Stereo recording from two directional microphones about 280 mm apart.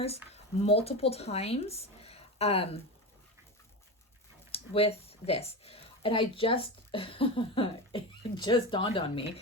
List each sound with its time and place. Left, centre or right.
0.6 s speech: left
4.5 s speech: left